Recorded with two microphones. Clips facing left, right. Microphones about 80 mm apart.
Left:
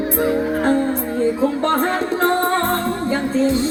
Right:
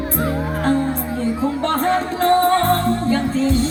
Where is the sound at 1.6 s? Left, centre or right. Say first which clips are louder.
Even; left.